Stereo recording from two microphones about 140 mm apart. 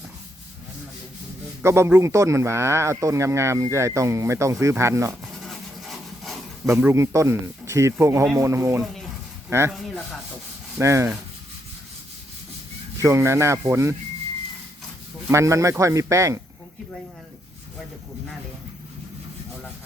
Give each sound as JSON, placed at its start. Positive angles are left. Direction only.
{"t": 1.6, "sound": "speech", "side_deg": -20}
{"t": 5.2, "sound": "rub", "side_deg": 0}
{"t": 6.7, "sound": "speech", "side_deg": -20}
{"t": 9.7, "sound": "speech", "side_deg": 0}
{"t": 10.8, "sound": "speech", "side_deg": -20}
{"t": 13.0, "sound": "speech", "side_deg": -20}
{"t": 15.3, "sound": "speech", "side_deg": -20}